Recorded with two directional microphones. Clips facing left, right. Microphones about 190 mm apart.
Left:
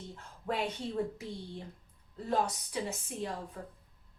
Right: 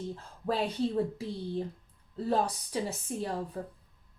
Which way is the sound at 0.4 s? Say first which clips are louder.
Right 3 dB; 30° right (ahead or behind).